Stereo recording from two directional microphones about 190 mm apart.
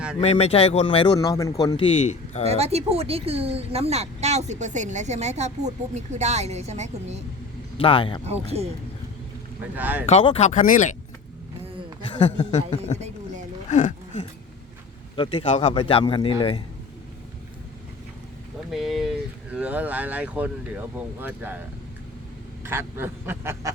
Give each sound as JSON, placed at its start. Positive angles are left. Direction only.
{"t": 0.2, "sound": "a man's voice", "side_deg": 30}
{"t": 2.5, "sound": "speech", "side_deg": -35}
{"t": 7.8, "sound": "a man's voice", "side_deg": 30}
{"t": 8.2, "sound": "speech", "side_deg": -35}
{"t": 9.7, "sound": "speech", "side_deg": -10}
{"t": 10.1, "sound": "speech", "side_deg": 30}
{"t": 12.1, "sound": "speech", "side_deg": 35}
{"t": 15.1, "sound": "a man's voice", "side_deg": 25}
{"t": 18.7, "sound": "speech", "side_deg": 0}
{"t": 22.6, "sound": "speech", "side_deg": -10}